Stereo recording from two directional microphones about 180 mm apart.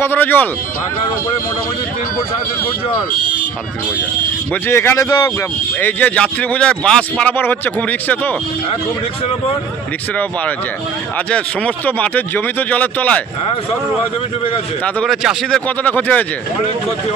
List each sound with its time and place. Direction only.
0.0 s speech: 10° left (ahead or behind)
4.6 s speech: 15° left (ahead or behind)
11.2 s speech: 5° left (ahead or behind)
15.0 s speech: centre (ahead or behind)